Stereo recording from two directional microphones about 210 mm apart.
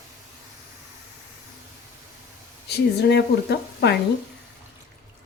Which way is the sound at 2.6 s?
50° left (ahead or behind).